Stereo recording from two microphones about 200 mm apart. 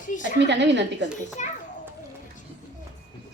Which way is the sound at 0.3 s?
60° right (ahead or behind).